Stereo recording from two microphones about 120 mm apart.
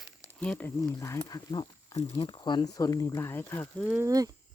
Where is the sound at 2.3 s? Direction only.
40° left (ahead or behind); by 3.9 s 15° left (ahead or behind).